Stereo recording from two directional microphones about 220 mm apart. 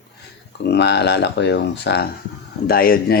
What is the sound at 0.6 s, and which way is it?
Speech, 50° left (ahead or behind).